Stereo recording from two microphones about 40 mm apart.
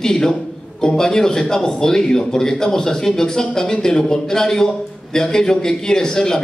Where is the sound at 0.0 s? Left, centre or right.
Centre.